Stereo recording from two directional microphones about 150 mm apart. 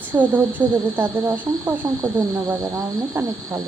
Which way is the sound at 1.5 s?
20° right (ahead or behind).